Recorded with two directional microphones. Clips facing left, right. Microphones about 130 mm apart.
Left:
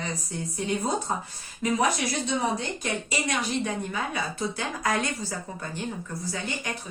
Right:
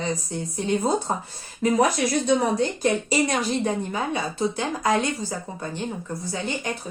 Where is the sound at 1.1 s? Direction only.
40° right (ahead or behind).